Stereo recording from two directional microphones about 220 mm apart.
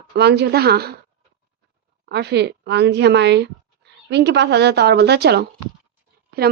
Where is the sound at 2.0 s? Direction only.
50° right (ahead or behind).